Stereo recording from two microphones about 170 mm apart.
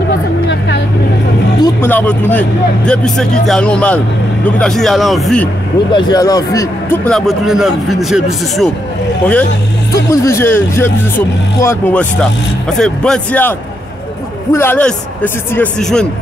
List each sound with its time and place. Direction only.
1.6 s a man's voice: 10° left (ahead or behind)
5.9 s speech: 25° left (ahead or behind)
7.1 s a man's voice: centre (ahead or behind)
9.9 s speech: 20° left (ahead or behind)